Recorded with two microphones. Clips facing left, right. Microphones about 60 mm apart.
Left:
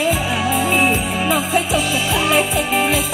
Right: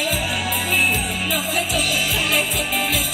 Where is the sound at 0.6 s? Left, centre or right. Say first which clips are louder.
Left 3 dB; left.